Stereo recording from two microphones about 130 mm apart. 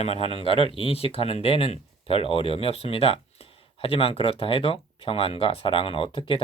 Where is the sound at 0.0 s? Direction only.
50° left (ahead or behind).